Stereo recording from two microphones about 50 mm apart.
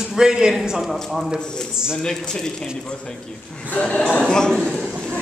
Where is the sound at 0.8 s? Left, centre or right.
Centre.